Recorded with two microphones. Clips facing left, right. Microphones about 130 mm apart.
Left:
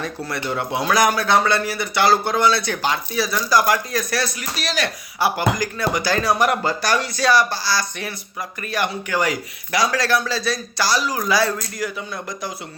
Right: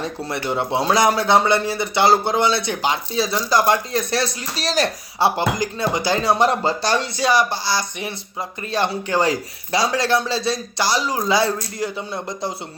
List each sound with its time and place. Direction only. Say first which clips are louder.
0.4 s speech: right 2 dB; 25° right (ahead or behind)
5.4 s speech: even; 25° right (ahead or behind)